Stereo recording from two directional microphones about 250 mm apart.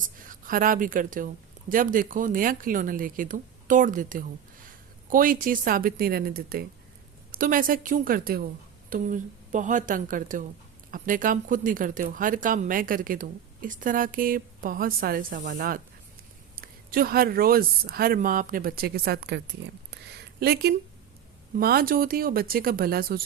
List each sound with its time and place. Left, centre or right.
0.2 s a woman's voice: right